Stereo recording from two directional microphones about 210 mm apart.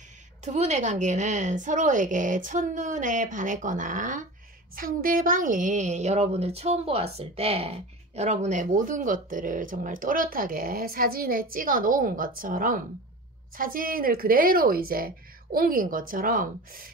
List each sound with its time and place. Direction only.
0.5 s a woman's voice: 35° right (ahead or behind)